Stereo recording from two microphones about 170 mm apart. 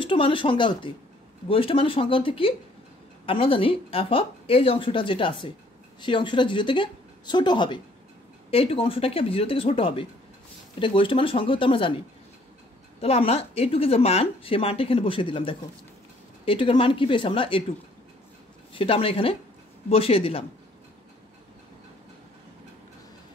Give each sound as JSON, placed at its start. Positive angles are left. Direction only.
{"t": 0.0, "sound": "speech", "side_deg": 30}
{"t": 13.0, "sound": "speech", "side_deg": 35}
{"t": 18.7, "sound": "speech", "side_deg": 35}